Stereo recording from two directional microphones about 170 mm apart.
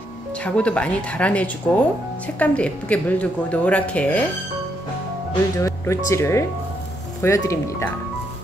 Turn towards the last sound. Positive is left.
turn(degrees=15)  # may be behind; listen again after turning